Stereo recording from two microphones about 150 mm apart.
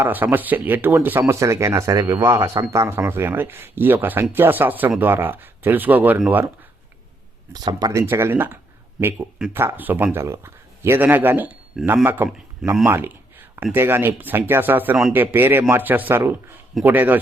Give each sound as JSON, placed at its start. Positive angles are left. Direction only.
{"t": 0.0, "sound": "speech", "side_deg": -10}
{"t": 7.5, "sound": "speech", "side_deg": -25}